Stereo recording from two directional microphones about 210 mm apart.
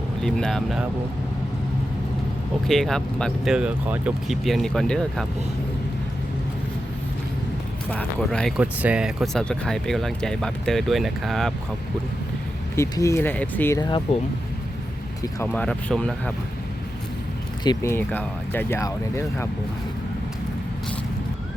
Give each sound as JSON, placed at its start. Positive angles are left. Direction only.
{"t": 0.2, "sound": "speech", "side_deg": 0}
{"t": 2.6, "sound": "speech", "side_deg": 0}
{"t": 7.9, "sound": "speech", "side_deg": 5}
{"t": 12.7, "sound": "speech", "side_deg": 15}
{"t": 13.7, "sound": "speech", "side_deg": 20}
{"t": 15.2, "sound": "speech", "side_deg": 10}
{"t": 17.6, "sound": "speech", "side_deg": 15}